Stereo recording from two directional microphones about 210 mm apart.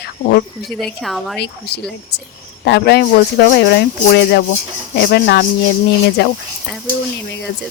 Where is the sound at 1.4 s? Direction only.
50° left (ahead or behind).